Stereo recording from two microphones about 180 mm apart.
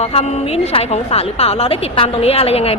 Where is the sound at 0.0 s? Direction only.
35° left (ahead or behind).